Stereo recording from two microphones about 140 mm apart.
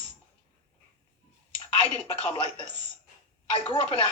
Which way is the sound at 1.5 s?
40° left (ahead or behind).